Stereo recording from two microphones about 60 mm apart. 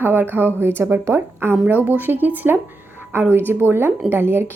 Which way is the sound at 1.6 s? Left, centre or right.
Right.